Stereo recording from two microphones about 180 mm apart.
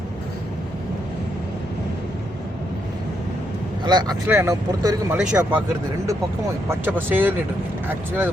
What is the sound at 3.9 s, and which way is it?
Speech, 25° right (ahead or behind).